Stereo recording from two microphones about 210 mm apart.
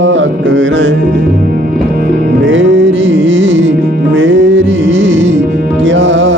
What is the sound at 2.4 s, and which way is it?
Music, 65° right (ahead or behind).